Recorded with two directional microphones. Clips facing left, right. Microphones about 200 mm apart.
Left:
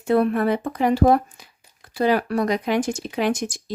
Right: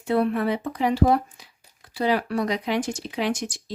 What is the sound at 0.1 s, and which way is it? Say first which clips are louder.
Speech: left 3 dB; 50° left (ahead or behind).